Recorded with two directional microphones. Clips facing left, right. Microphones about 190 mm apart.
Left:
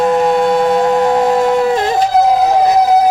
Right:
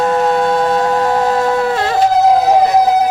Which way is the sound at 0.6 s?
15° left (ahead or behind).